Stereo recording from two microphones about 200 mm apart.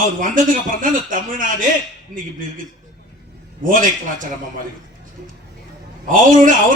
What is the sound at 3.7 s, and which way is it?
Speech, 40° right (ahead or behind).